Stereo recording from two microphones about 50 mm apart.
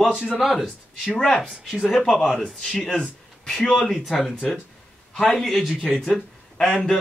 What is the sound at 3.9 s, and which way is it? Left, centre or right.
Speech, centre.